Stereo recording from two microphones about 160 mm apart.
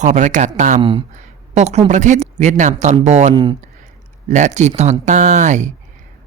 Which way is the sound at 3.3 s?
25° right (ahead or behind).